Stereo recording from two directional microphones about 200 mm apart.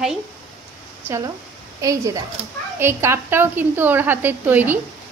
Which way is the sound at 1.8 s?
15° right (ahead or behind).